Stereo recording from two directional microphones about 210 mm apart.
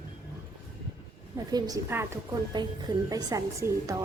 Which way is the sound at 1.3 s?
15° right (ahead or behind).